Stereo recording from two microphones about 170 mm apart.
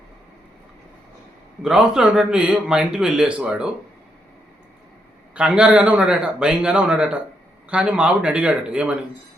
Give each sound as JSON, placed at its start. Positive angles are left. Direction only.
{"t": 1.6, "sound": "a man's voice", "side_deg": -5}
{"t": 5.3, "sound": "a man's voice", "side_deg": -5}